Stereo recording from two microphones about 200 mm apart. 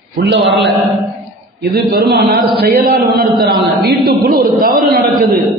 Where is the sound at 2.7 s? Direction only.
50° right (ahead or behind).